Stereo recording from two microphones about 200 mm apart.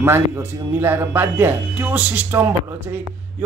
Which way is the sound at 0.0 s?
10° right (ahead or behind).